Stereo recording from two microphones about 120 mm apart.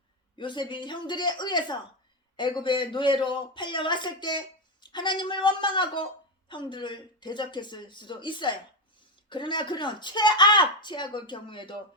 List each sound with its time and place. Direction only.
0.3 s speech: 40° left (ahead or behind)